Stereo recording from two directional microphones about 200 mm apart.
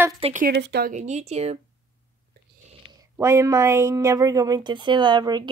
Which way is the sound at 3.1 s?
15° right (ahead or behind).